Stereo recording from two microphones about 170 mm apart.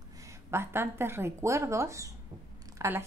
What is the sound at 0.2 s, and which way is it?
A woman's voice, 15° right (ahead or behind).